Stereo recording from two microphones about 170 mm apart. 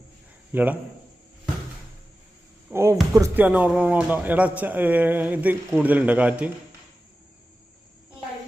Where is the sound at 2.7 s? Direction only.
15° right (ahead or behind).